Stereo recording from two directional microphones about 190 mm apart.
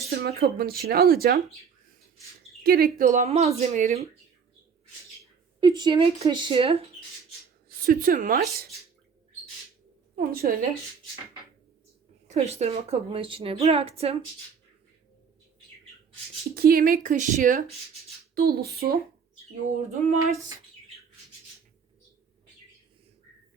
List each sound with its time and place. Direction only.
0.3 s a woman's voice: 55° right (ahead or behind)
2.6 s a woman's voice: 50° right (ahead or behind)
5.5 s speech: 25° right (ahead or behind)
7.9 s a woman's voice: 45° right (ahead or behind)
10.2 s a woman's voice: 50° right (ahead or behind)
12.3 s a woman's voice: 35° right (ahead or behind)
16.6 s a woman's voice: 50° right (ahead or behind)
18.3 s a woman's voice: 55° right (ahead or behind)
19.6 s a woman's voice: 35° right (ahead or behind)